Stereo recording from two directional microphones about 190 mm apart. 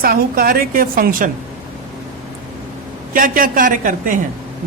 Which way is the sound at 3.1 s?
45° right (ahead or behind).